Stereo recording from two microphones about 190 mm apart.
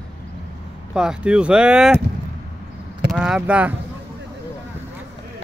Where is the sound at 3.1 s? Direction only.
5° right (ahead or behind).